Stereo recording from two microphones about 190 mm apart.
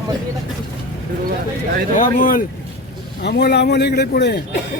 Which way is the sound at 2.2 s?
45° left (ahead or behind).